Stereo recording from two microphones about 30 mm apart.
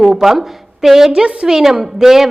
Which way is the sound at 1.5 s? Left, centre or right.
Centre.